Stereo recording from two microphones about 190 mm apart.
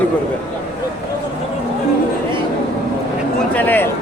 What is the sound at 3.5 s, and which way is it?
Speech, 10° left (ahead or behind).